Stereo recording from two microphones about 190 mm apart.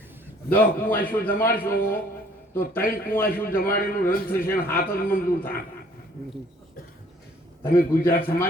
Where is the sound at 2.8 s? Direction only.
50° left (ahead or behind).